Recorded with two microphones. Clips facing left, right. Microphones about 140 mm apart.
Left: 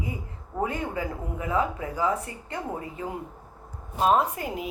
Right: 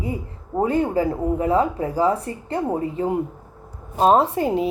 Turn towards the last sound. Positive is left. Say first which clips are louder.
# right 9 dB
turn(degrees=-30)  # may be behind; listen again after turning